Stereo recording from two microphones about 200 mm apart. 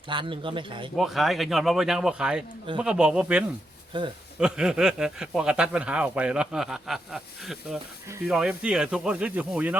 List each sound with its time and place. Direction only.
0.1 s a man's voice: 25° right (ahead or behind)
0.9 s a man's voice: centre (ahead or behind)
3.9 s a man's voice: 25° right (ahead or behind)
4.4 s a man's voice: 5° right (ahead or behind)